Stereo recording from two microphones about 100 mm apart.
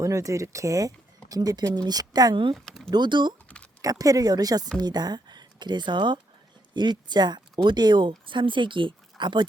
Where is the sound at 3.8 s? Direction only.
35° right (ahead or behind).